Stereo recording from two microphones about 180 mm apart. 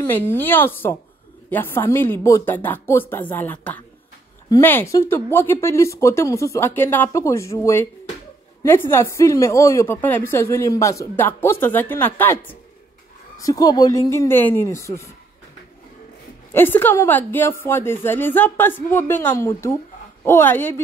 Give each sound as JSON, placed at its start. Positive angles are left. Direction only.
{"t": 0.0, "sound": "speech", "side_deg": 10}
{"t": 16.5, "sound": "speech", "side_deg": 10}